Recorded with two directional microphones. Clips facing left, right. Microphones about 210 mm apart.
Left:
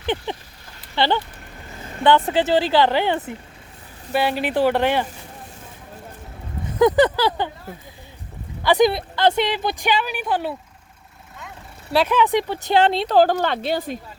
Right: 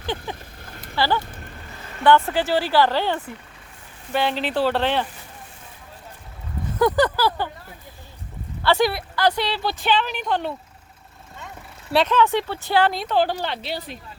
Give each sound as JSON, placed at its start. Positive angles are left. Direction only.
{"t": 0.0, "sound": "vehicle", "side_deg": 20}
{"t": 0.9, "sound": "a woman's voice", "side_deg": 25}
{"t": 6.7, "sound": "speech", "side_deg": 20}
{"t": 8.6, "sound": "a woman's voice", "side_deg": 20}
{"t": 11.9, "sound": "speech", "side_deg": 0}
{"t": 12.1, "sound": "a woman's voice", "side_deg": 15}
{"t": 13.1, "sound": "speech", "side_deg": 50}